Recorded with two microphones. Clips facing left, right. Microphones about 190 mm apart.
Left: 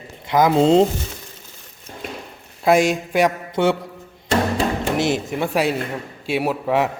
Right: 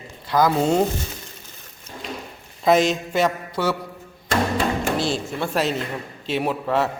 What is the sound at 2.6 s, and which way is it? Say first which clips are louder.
Speech: left 1 dB; 10° left (ahead or behind).